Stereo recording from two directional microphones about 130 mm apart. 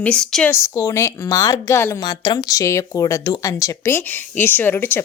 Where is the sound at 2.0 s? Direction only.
35° left (ahead or behind).